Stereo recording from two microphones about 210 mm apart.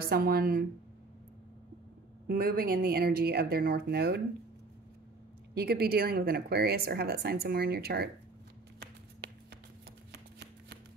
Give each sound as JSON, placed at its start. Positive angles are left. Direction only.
{"t": 0.0, "sound": "speech", "side_deg": -45}
{"t": 2.2, "sound": "speech", "side_deg": -45}
{"t": 5.5, "sound": "speech", "side_deg": -50}
{"t": 10.1, "sound": "shuffling cards", "side_deg": -55}